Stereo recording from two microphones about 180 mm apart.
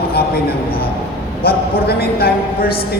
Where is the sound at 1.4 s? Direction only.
60° left (ahead or behind).